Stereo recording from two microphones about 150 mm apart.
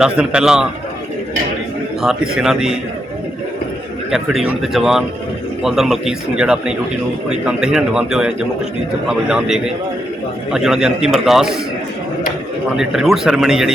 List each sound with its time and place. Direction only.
0.0 s a man's voice: 5° right (ahead or behind)
2.0 s a man's voice: 5° right (ahead or behind)
4.1 s a man's voice: centre (ahead or behind)
12.7 s a man's voice: 5° right (ahead or behind)